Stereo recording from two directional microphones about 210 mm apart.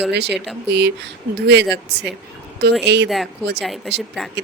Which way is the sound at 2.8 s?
55° right (ahead or behind).